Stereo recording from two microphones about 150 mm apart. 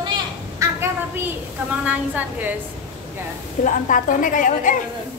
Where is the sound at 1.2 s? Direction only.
10° right (ahead or behind).